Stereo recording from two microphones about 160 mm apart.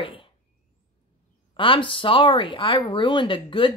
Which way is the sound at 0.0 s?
30° left (ahead or behind).